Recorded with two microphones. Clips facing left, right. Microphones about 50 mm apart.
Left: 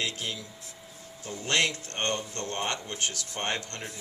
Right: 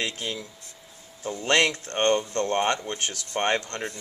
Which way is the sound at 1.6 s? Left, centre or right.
Right.